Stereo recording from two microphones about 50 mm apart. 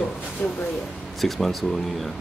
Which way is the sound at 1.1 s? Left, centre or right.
Centre.